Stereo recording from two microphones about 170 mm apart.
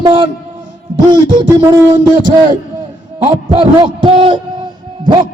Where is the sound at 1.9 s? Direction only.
25° right (ahead or behind).